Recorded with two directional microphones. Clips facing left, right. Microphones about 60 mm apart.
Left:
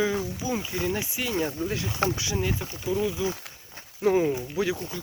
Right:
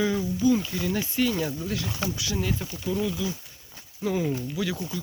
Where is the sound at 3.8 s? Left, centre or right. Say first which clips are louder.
Left 5 dB; left.